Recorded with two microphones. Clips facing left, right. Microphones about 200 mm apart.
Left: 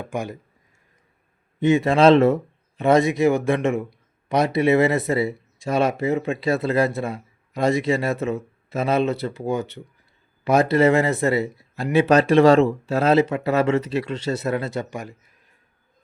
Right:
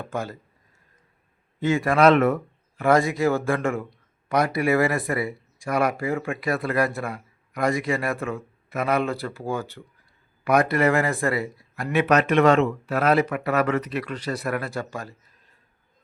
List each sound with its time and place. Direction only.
0.0 s speech: 15° left (ahead or behind)
1.6 s a man's voice: 20° left (ahead or behind)